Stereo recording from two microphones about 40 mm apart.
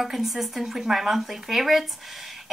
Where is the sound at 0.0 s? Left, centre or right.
Centre.